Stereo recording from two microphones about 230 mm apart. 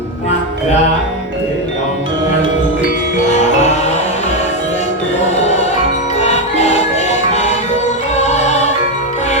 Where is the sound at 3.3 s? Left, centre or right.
Left.